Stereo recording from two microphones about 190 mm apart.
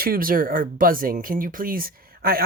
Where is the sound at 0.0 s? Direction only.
50° right (ahead or behind).